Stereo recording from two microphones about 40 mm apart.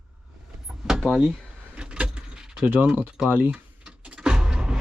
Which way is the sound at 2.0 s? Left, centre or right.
Right.